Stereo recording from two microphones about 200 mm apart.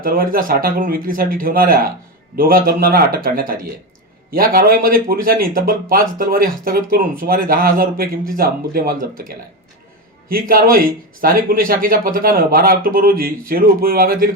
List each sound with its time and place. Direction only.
0.0 s speech: 45° right (ahead or behind)